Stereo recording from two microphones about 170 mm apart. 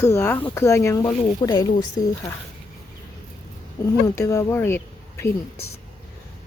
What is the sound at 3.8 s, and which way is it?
Speech, 20° left (ahead or behind).